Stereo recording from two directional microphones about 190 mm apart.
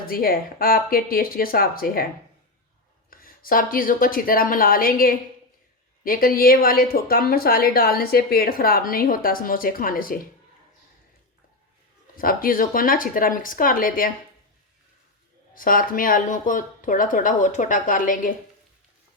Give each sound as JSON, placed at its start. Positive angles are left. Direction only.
{"t": 0.1, "sound": "a woman's voice", "side_deg": 50}
{"t": 3.1, "sound": "a woman's voice", "side_deg": 50}
{"t": 12.1, "sound": "a woman's voice", "side_deg": 50}
{"t": 15.5, "sound": "a woman's voice", "side_deg": 45}